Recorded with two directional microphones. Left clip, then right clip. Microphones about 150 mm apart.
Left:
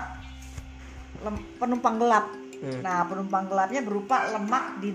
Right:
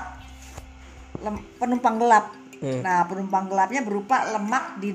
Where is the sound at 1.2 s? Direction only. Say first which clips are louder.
Right 2 dB; centre (ahead or behind).